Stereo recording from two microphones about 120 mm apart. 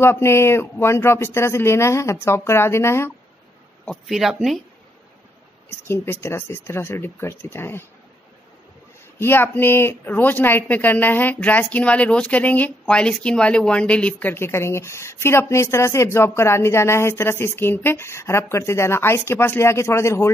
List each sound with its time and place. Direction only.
0.0 s a woman's voice: 20° left (ahead or behind)
3.8 s speech: centre (ahead or behind)
5.7 s a woman's voice: 20° left (ahead or behind)
9.2 s a woman's voice: 20° left (ahead or behind)